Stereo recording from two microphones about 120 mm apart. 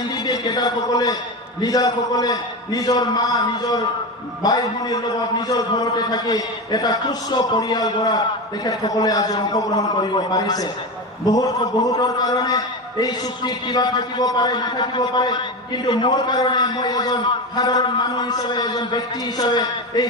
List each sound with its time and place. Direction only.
0.3 s a man's voice: 35° left (ahead or behind)